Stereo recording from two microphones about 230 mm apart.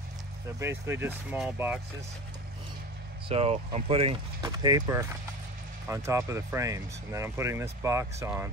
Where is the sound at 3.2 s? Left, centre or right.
Right.